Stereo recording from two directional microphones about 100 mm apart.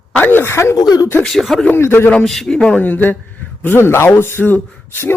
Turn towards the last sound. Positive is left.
turn(degrees=20)  # may be behind; listen again after turning